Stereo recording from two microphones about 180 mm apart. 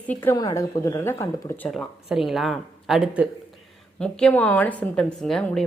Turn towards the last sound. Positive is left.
turn(degrees=0)  # may be behind; listen again after turning